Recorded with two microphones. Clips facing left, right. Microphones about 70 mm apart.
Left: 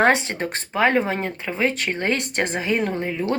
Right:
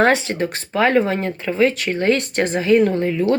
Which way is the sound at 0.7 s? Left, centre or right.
Left.